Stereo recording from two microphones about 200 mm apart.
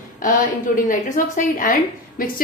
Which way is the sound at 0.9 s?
40° left (ahead or behind).